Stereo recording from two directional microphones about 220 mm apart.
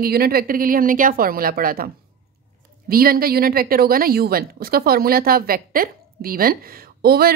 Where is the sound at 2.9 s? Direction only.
40° right (ahead or behind).